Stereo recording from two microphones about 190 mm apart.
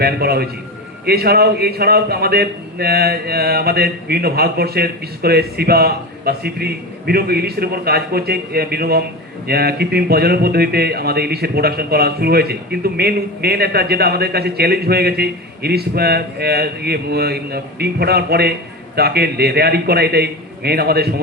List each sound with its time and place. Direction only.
0.0 s speech: 55° right (ahead or behind)